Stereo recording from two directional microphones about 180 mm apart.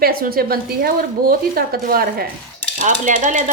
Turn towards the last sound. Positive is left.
turn(degrees=-45)  # may be behind; listen again after turning